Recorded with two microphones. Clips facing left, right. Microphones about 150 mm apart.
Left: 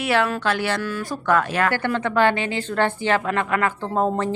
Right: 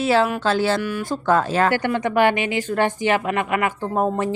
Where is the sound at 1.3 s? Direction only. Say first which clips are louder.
Right 2 dB; 30° right (ahead or behind).